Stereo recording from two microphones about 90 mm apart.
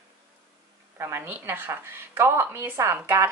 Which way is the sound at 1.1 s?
25° right (ahead or behind).